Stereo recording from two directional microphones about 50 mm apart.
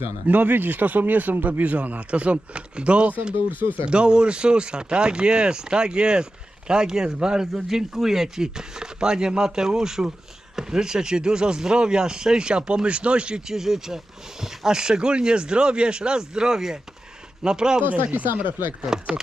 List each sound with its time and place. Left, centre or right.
0.3 s speech: right
13.5 s speech: centre
17.8 s speech: right
18.9 s speech: centre